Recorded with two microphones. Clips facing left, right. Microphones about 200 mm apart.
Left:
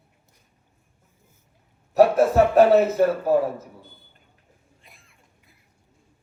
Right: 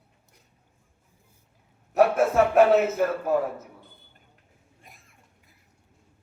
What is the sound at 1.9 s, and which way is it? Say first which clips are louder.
Speech: left 3 dB; 35° left (ahead or behind).